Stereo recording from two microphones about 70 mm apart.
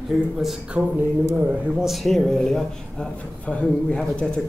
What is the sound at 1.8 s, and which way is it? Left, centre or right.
Speech, centre.